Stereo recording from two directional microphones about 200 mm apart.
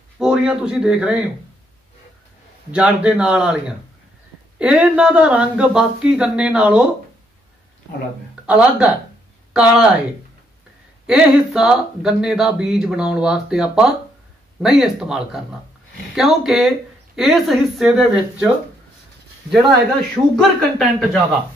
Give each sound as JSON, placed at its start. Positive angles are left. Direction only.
{"t": 0.2, "sound": "a man's voice", "side_deg": -5}
{"t": 2.7, "sound": "speech", "side_deg": -5}
{"t": 8.5, "sound": "speech", "side_deg": -5}
{"t": 11.1, "sound": "speech", "side_deg": -5}
{"t": 20.3, "sound": "speech", "side_deg": 5}